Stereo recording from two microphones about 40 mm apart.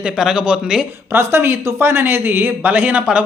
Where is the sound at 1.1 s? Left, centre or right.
Right.